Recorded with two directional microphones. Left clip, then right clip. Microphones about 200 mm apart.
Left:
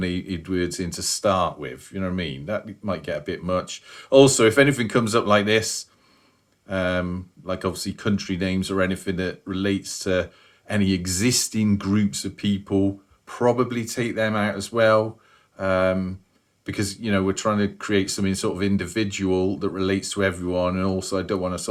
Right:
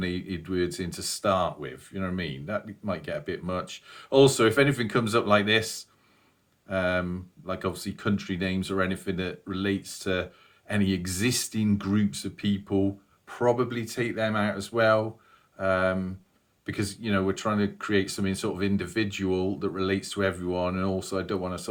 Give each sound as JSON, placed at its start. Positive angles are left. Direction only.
{"t": 0.0, "sound": "speech", "side_deg": 40}